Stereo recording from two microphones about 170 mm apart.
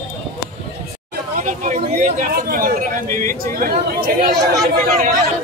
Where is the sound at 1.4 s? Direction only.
45° right (ahead or behind).